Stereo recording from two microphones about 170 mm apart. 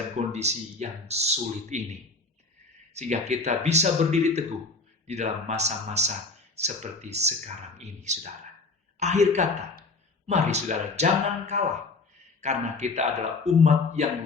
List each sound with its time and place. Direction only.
0.3 s speech: 40° right (ahead or behind)
2.9 s a woman's voice: 40° right (ahead or behind)